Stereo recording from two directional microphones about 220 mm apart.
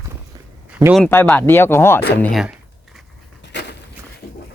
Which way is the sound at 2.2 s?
Centre (ahead or behind).